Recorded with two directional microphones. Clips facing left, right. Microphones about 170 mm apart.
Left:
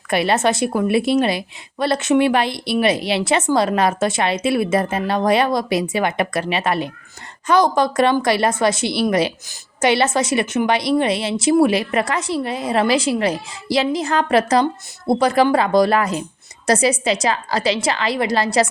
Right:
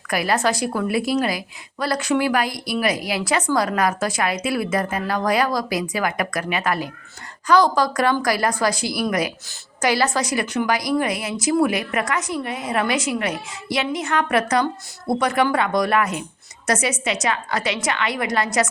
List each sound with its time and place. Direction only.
0.1 s a woman's voice: 25° left (ahead or behind)